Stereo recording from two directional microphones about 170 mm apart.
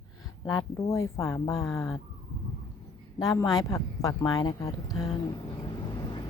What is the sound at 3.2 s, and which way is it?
Speech, 20° left (ahead or behind).